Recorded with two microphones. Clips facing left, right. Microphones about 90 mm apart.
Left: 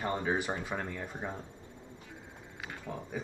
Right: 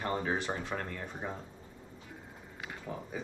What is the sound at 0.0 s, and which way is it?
Speech, 10° left (ahead or behind).